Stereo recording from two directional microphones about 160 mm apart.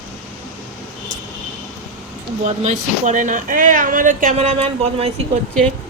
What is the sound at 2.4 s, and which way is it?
Speech, 45° right (ahead or behind).